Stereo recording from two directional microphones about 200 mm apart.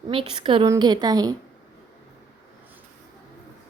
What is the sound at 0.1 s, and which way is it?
A woman's voice, 25° right (ahead or behind).